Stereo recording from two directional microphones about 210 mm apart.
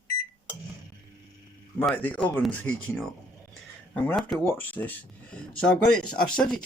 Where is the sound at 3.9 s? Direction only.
5° left (ahead or behind).